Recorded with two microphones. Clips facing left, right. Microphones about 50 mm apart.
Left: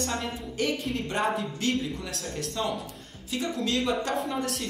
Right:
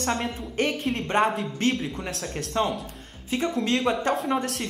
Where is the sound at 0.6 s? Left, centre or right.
Right.